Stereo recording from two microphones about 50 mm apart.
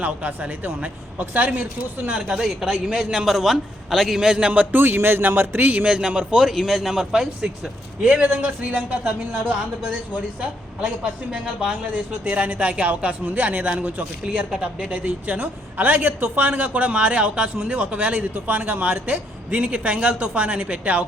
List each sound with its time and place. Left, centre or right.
0.0 s speech: right
2.1 s a man's voice: centre
4.5 s speech: right
5.9 s a man's voice: centre
8.2 s a woman's voice: right
10.8 s a woman's voice: right
14.3 s a woman's voice: centre